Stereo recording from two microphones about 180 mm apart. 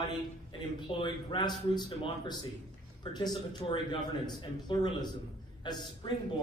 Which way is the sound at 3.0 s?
25° left (ahead or behind).